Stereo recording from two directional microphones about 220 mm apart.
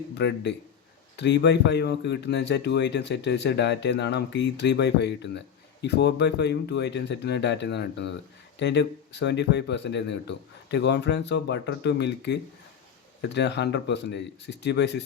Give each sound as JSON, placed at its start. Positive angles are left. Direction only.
{"t": 0.1, "sound": "speech", "side_deg": 50}